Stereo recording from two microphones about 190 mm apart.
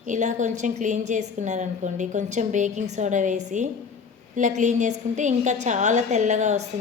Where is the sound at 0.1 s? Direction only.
40° right (ahead or behind).